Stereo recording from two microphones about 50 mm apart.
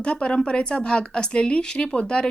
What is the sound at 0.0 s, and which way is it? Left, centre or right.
A woman's voice, left.